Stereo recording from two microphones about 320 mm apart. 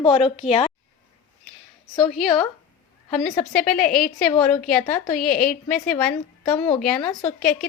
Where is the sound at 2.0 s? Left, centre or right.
Centre.